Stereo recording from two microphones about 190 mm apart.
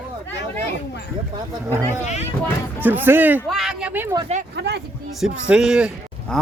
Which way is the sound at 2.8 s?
10° right (ahead or behind).